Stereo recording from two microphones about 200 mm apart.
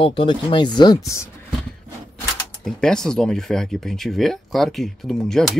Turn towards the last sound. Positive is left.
turn(degrees=0)  # may be behind; listen again after turning